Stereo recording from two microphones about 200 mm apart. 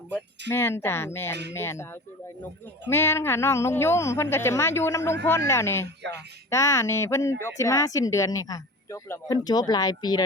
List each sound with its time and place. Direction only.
0.1 s speech: 10° left (ahead or behind)